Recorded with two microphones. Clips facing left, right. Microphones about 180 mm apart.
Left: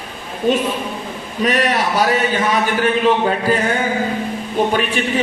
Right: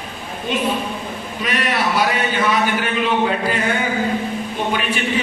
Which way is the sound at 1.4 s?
40° left (ahead or behind).